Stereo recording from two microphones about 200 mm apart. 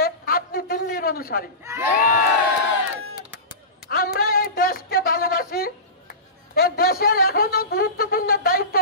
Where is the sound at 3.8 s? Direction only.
50° left (ahead or behind).